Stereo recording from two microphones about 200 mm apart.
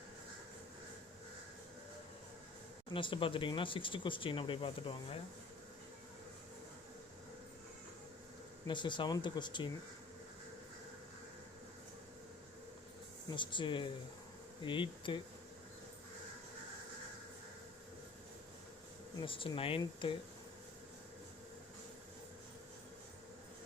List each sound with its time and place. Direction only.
2.9 s speech: 25° left (ahead or behind)
8.6 s speech: 25° left (ahead or behind)
13.3 s speech: 25° left (ahead or behind)
19.2 s speech: 25° left (ahead or behind)